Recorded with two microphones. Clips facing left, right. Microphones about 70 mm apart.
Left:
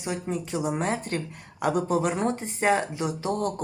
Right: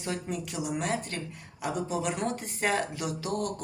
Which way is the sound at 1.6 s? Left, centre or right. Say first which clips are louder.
Left 7 dB; left.